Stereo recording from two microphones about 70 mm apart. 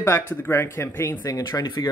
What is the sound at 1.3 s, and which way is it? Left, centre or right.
Speech, left.